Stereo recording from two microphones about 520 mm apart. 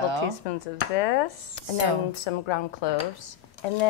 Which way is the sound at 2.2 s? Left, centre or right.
Left.